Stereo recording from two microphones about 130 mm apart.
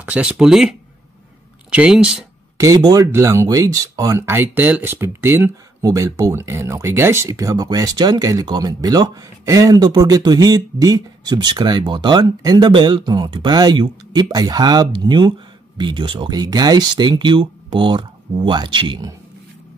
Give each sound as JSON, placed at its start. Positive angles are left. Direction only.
{"t": 0.0, "sound": "speech", "side_deg": -10}
{"t": 2.5, "sound": "speech", "side_deg": -25}
{"t": 4.2, "sound": "speech", "side_deg": -15}